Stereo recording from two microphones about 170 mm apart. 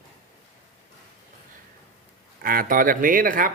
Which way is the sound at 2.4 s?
55° right (ahead or behind).